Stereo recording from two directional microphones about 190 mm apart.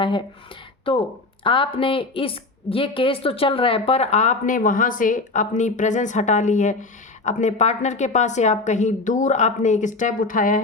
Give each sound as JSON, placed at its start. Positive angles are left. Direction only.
{"t": 0.0, "sound": "speech", "side_deg": 25}
{"t": 1.5, "sound": "a woman's voice", "side_deg": 25}